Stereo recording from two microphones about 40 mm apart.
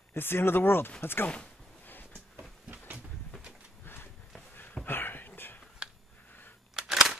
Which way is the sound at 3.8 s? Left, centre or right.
Left.